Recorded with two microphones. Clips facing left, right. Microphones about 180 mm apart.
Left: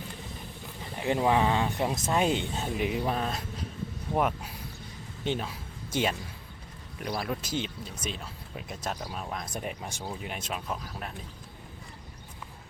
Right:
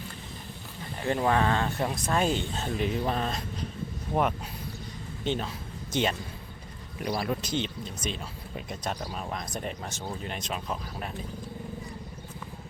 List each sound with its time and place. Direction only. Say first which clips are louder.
0.9 s speech: even; 15° left (ahead or behind)